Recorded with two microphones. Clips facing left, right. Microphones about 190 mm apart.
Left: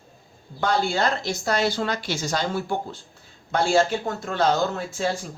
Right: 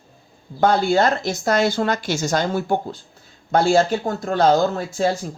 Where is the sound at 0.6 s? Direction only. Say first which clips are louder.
Right 6 dB; 50° right (ahead or behind).